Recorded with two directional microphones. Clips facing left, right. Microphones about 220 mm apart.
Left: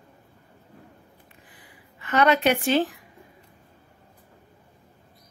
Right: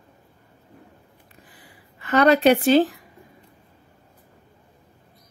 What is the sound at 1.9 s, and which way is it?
Speech, 35° right (ahead or behind).